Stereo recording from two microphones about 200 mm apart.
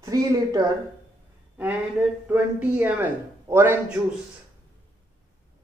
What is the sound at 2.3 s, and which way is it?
A man's voice, 10° right (ahead or behind).